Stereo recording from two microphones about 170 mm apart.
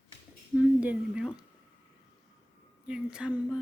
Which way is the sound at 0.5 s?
10° right (ahead or behind).